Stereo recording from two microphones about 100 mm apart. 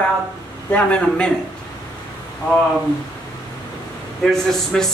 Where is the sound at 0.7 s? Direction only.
15° left (ahead or behind).